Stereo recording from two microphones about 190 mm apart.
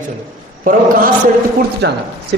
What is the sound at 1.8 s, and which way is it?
Speech, 60° right (ahead or behind).